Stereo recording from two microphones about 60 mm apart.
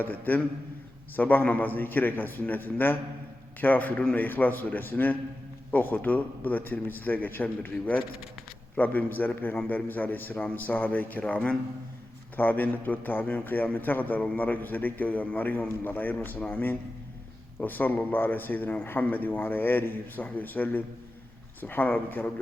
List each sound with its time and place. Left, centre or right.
0.0 s a man's voice: left